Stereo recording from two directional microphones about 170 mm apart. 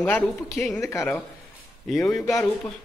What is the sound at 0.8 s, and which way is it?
A man's voice, 15° left (ahead or behind).